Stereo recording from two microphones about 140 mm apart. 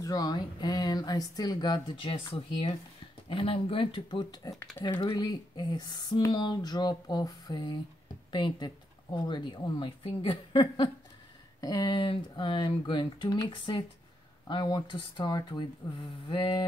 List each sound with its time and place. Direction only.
0.0 s speech: 30° left (ahead or behind)